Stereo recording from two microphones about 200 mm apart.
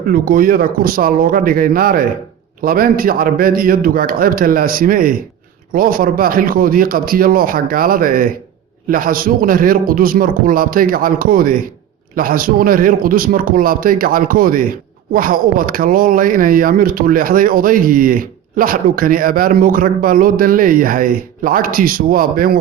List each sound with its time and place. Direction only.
0.1 s speech: 45° right (ahead or behind)